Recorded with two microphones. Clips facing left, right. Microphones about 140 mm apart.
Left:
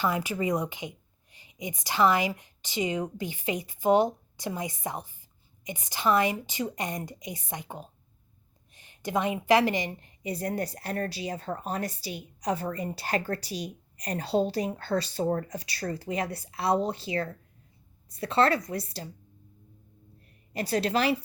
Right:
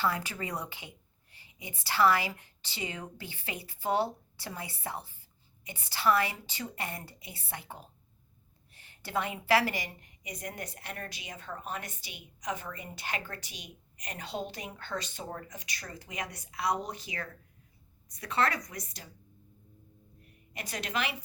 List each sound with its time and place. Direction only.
0.0 s a woman's voice: 15° left (ahead or behind); by 19.0 s 30° left (ahead or behind)
20.5 s a woman's voice: 35° left (ahead or behind)